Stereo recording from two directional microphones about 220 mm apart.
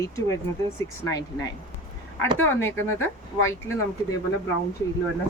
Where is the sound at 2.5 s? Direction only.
10° left (ahead or behind).